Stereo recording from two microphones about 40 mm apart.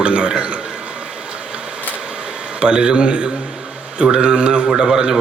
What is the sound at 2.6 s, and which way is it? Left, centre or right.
Speech, right.